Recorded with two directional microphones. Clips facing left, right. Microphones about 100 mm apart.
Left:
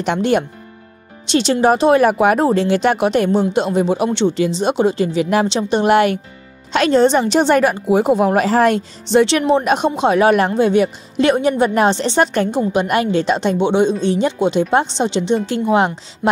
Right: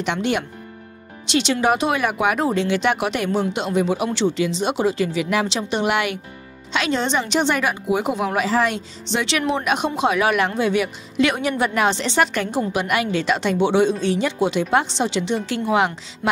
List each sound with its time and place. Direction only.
0.0 s a woman's voice: 40° left (ahead or behind)
9.5 s speech: 35° left (ahead or behind)